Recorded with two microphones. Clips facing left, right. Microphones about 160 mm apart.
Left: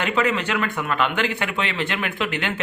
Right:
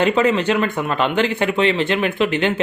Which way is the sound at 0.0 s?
30° right (ahead or behind).